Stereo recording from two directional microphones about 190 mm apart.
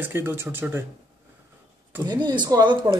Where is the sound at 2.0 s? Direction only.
20° right (ahead or behind).